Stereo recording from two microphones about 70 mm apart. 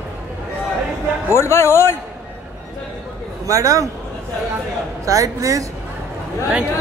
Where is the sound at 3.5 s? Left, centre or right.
Right.